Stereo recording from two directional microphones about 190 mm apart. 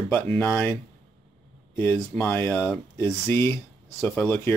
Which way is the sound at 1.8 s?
10° left (ahead or behind).